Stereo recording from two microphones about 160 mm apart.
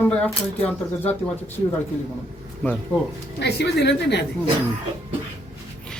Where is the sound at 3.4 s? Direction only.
90° left.